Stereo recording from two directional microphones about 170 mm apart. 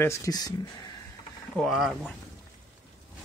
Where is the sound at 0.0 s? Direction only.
20° left (ahead or behind).